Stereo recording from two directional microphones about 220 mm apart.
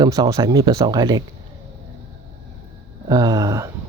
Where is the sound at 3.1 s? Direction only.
15° right (ahead or behind).